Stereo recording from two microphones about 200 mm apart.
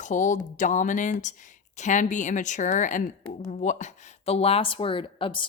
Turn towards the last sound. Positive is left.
turn(degrees=25)  # may be behind; listen again after turning